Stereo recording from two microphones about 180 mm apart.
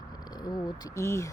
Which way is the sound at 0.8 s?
15° left (ahead or behind).